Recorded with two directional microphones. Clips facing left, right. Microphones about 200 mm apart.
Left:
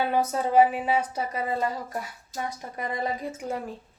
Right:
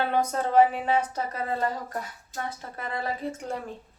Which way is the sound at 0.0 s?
10° left (ahead or behind).